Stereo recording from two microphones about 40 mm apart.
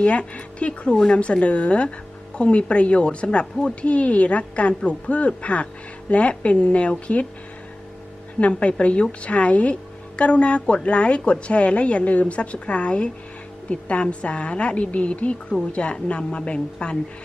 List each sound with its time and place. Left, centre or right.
0.0 s speech: left
8.4 s speech: left